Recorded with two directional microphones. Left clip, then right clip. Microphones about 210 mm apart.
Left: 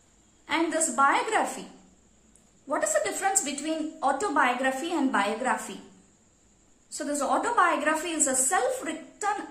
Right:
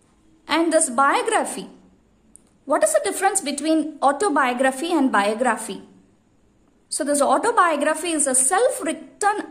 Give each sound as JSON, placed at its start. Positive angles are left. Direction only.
{"t": 0.5, "sound": "a woman's voice", "side_deg": -50}
{"t": 2.6, "sound": "a woman's voice", "side_deg": -45}
{"t": 7.0, "sound": "a woman's voice", "side_deg": -45}